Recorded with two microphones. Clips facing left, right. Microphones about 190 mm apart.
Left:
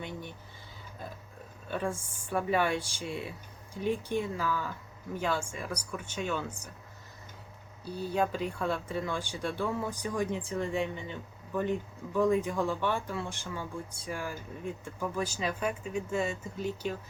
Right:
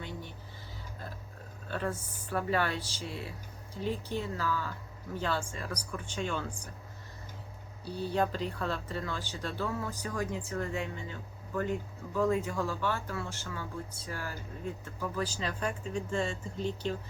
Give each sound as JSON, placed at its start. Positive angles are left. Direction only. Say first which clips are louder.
{"t": 0.0, "sound": "a sound", "louder": "left 2 dB", "side_deg": 15}
{"t": 1.6, "sound": "speech", "louder": "left 1 dB", "side_deg": 15}
{"t": 8.1, "sound": "speech", "louder": "left 1 dB", "side_deg": 10}